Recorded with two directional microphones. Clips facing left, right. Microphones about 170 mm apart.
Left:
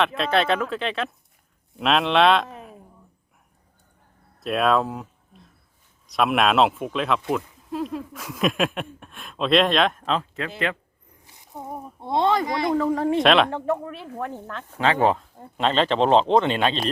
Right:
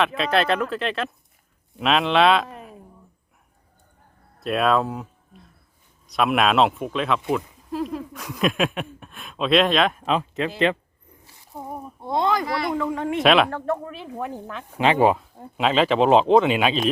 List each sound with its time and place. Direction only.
0.0 s a man's voice: centre (ahead or behind)
4.4 s speech: centre (ahead or behind); by 10.5 s 20° right (ahead or behind)
11.9 s speech: 25° left (ahead or behind)
12.7 s speech: 35° left (ahead or behind)
13.1 s speech: centre (ahead or behind)
13.5 s speech: 10° left (ahead or behind)
13.8 s speech: centre (ahead or behind)